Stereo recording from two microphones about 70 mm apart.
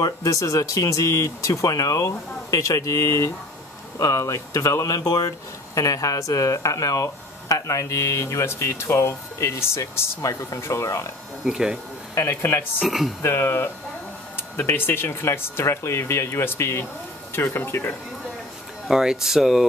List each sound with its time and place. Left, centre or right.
0.0 s speech: left
11.4 s speech: centre
12.2 s speech: left
12.8 s speech: centre
13.2 s speech: left
18.9 s speech: centre